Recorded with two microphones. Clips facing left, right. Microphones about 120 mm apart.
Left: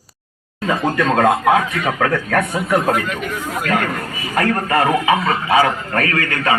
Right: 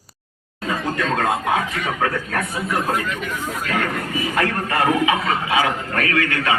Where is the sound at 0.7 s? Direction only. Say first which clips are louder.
Left 5 dB; 70° left (ahead or behind).